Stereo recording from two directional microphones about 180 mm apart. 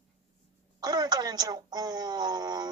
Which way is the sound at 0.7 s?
20° right (ahead or behind).